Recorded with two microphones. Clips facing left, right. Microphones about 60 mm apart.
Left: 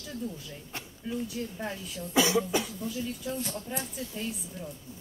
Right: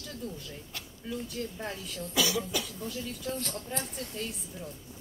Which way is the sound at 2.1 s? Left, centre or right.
Left.